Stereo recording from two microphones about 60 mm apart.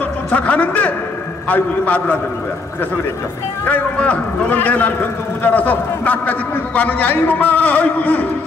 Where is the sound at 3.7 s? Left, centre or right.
Left.